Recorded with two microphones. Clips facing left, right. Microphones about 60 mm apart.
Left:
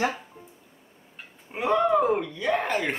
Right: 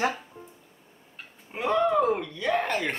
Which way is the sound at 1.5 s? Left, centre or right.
Centre.